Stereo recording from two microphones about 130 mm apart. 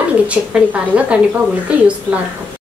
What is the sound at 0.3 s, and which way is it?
Speech, 10° right (ahead or behind).